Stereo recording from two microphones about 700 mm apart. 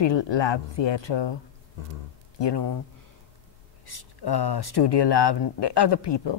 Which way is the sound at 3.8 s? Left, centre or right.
Left.